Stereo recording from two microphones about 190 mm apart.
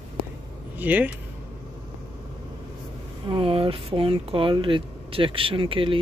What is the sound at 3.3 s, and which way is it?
Speech, 30° right (ahead or behind).